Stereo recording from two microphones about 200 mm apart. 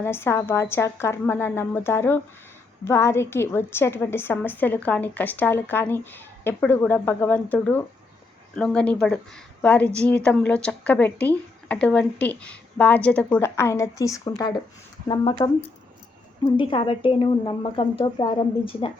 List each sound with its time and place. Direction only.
0.0 s a woman's voice: 10° left (ahead or behind)